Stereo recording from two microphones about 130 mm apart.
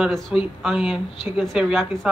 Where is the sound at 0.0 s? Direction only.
Centre (ahead or behind).